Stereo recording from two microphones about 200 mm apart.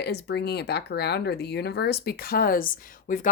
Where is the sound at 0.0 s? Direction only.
55° left (ahead or behind).